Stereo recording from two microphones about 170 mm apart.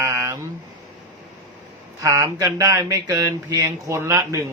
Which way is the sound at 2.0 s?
20° right (ahead or behind).